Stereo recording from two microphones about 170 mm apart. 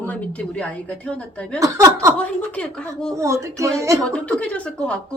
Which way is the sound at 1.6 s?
20° right (ahead or behind).